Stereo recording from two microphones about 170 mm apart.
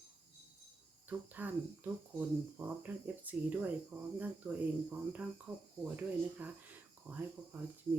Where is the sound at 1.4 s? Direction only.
10° right (ahead or behind).